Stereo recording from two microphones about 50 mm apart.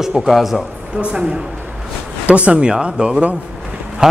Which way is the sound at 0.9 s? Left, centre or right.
Centre.